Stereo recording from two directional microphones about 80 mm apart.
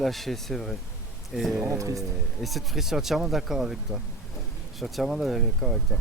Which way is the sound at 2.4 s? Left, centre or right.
Centre.